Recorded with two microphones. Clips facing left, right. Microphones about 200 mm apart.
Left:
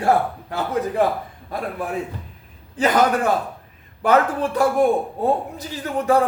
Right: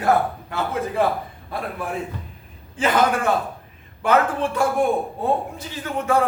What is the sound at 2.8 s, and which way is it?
Speech, 40° left (ahead or behind).